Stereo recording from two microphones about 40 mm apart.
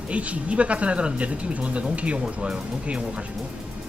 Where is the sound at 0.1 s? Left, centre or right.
Right.